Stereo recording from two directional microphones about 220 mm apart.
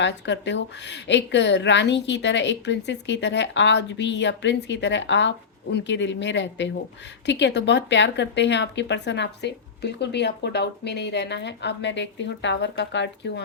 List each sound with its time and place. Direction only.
0.0 s speech: 55° left (ahead or behind)